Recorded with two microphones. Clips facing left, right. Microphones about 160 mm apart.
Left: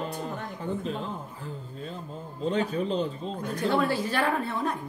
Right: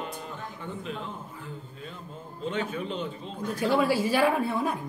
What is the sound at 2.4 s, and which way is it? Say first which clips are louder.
Speech: left 4 dB; 35° left (ahead or behind).